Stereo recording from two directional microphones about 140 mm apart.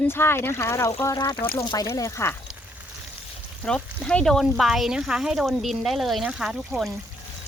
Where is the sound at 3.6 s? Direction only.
5° left (ahead or behind).